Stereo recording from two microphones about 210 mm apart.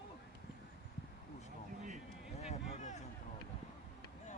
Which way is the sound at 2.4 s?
35° left (ahead or behind).